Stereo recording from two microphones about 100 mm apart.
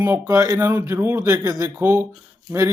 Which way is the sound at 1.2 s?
30° right (ahead or behind).